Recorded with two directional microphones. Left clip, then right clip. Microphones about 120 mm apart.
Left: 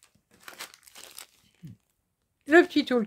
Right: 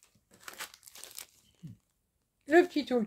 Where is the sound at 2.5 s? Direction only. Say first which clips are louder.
Left 5 dB; 55° left (ahead or behind).